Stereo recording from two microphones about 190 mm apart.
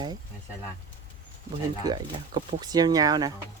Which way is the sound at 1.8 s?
20° right (ahead or behind).